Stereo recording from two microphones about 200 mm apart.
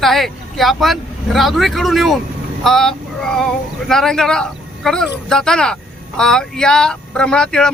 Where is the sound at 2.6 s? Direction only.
Centre (ahead or behind).